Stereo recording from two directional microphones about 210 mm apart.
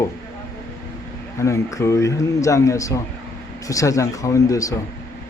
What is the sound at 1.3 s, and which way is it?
Speech, 15° left (ahead or behind).